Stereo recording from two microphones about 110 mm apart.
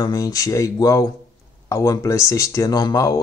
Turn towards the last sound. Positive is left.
turn(degrees=30)  # may be behind; listen again after turning